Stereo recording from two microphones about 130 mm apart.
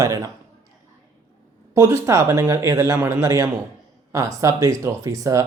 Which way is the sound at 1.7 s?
20° right (ahead or behind).